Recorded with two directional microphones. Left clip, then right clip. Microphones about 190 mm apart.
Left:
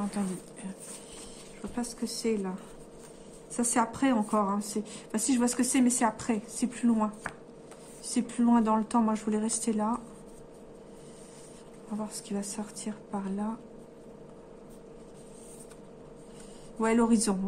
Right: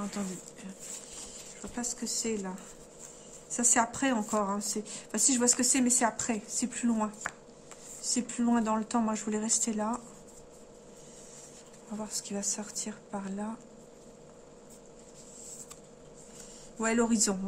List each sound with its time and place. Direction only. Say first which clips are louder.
0.2 s a woman's voice: left 4 dB; 10° right (ahead or behind)
1.8 s a woman's voice: even; 15° right (ahead or behind)
3.5 s a woman's voice: right 1 dB; 20° right (ahead or behind)
12.0 s a woman's voice: right 1 dB; 20° right (ahead or behind)
16.8 s a woman's voice: left 2 dB; 15° right (ahead or behind)